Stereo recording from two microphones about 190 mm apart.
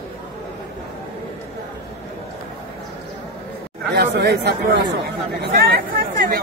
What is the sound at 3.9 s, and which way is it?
Speech, 60° right (ahead or behind).